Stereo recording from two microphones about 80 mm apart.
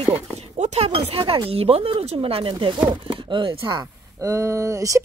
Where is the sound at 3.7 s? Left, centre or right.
Right.